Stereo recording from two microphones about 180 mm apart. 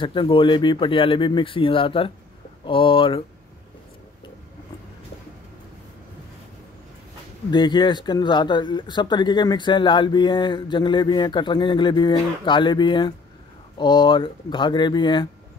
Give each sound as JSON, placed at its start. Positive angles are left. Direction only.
{"t": 0.0, "sound": "speech", "side_deg": 25}
{"t": 7.5, "sound": "speech", "side_deg": 25}